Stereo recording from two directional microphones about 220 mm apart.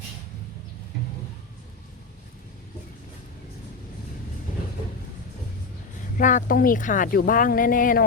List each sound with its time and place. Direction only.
6.1 s speech: 35° left (ahead or behind)